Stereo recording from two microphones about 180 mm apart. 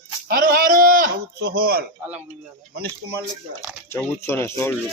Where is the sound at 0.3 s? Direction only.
55° right (ahead or behind).